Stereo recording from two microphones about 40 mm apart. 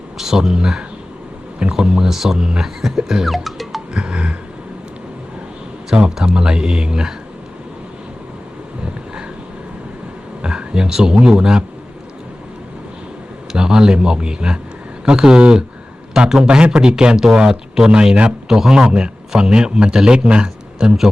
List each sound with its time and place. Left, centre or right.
0.2 s a man's voice: centre
3.2 s music: centre
3.9 s music: right
5.9 s speech: centre
10.4 s a sound: right
10.8 s speech: centre
13.5 s a man's voice: centre
20.7 s a man's voice: centre